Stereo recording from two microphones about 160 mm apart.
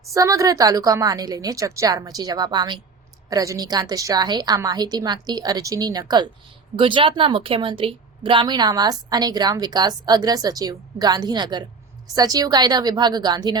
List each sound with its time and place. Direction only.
0.1 s a woman's voice: 20° right (ahead or behind)